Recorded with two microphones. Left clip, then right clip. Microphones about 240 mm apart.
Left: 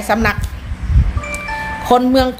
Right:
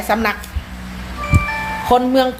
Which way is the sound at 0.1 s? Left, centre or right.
Centre.